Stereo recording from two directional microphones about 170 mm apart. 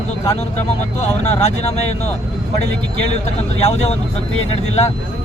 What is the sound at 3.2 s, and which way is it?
Speech, 40° left (ahead or behind).